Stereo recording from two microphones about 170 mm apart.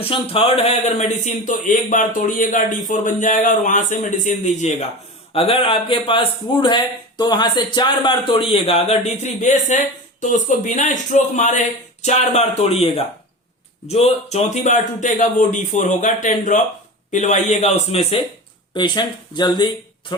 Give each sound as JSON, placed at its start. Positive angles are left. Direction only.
{"t": 0.0, "sound": "a man's voice", "side_deg": 35}
{"t": 18.7, "sound": "speech", "side_deg": 25}